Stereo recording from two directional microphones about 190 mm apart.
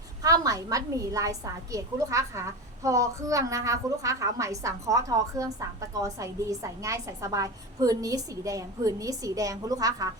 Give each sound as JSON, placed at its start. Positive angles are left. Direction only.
{"t": 0.2, "sound": "a woman's voice", "side_deg": -20}